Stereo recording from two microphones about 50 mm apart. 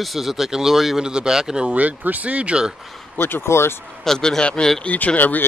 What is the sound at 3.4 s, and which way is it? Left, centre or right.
Speech, left.